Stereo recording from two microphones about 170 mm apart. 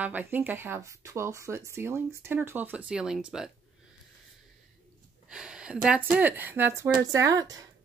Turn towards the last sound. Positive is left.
turn(degrees=-20)  # may be behind; listen again after turning